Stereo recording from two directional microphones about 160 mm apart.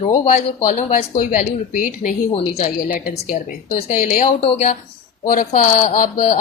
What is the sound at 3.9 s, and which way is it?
Speech, 50° left (ahead or behind).